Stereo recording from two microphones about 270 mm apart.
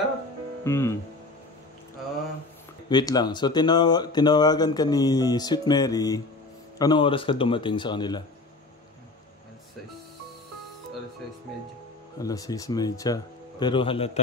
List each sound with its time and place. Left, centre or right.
0.7 s speech: centre
2.9 s speech: centre
12.2 s speech: centre